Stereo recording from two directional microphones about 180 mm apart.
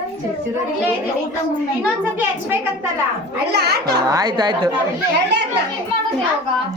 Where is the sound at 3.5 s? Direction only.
65° right (ahead or behind).